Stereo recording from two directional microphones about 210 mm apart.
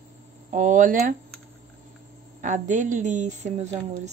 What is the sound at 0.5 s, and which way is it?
Speech, 35° right (ahead or behind).